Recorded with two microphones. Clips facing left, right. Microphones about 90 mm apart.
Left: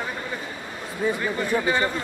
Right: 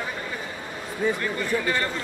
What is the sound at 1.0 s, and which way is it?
Speech, 10° left (ahead or behind).